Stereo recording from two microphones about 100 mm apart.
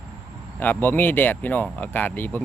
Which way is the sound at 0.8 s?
20° left (ahead or behind).